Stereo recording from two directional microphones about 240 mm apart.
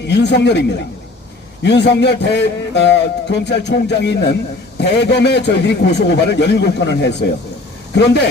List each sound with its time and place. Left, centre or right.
0.0 s a man's voice: left
1.6 s a man's voice: left